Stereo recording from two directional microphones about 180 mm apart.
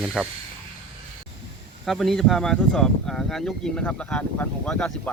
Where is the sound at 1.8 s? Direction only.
Centre (ahead or behind).